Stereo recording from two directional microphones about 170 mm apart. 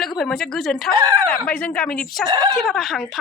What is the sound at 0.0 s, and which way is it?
A woman's voice, 5° left (ahead or behind).